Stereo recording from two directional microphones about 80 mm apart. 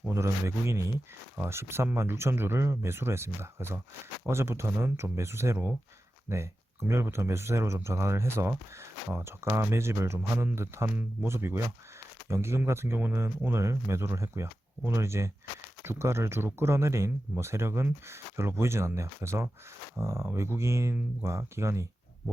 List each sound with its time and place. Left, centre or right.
0.1 s speech: right